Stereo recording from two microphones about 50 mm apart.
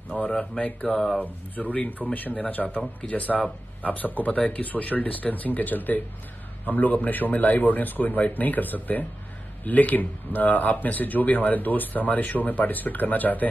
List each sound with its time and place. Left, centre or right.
0.1 s speech: left